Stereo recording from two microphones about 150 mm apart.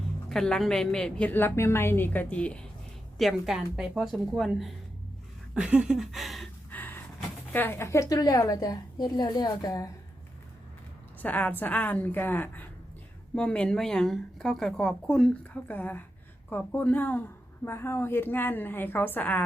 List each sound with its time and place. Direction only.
0.3 s a woman's voice: 5° left (ahead or behind)
5.5 s a sound: 5° right (ahead or behind)
6.7 s gasp: 10° left (ahead or behind)
7.5 s a woman's voice: 15° left (ahead or behind)
11.2 s a woman's voice: 10° left (ahead or behind)